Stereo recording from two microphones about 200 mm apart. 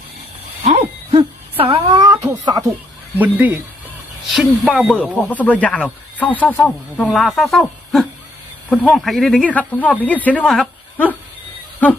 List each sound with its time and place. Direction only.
0.6 s owl: 30° right (ahead or behind)
2.3 s speech: 20° right (ahead or behind)
3.2 s speech: 10° right (ahead or behind)